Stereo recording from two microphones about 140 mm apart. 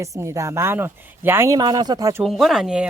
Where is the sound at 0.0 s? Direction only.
20° right (ahead or behind).